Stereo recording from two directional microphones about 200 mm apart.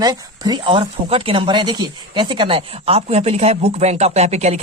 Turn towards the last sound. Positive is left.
turn(degrees=-35)  # may be behind; listen again after turning